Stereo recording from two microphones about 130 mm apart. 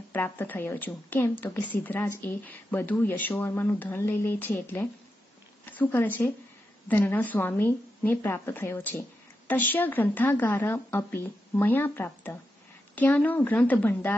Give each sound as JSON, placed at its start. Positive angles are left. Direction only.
{"t": 0.1, "sound": "speech", "side_deg": 15}